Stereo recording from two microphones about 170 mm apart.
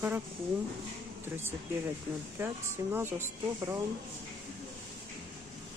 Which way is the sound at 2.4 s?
15° right (ahead or behind).